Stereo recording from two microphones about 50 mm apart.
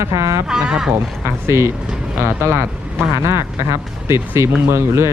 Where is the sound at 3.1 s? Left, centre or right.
Right.